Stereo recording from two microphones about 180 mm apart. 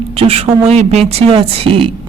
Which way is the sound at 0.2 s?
35° right (ahead or behind).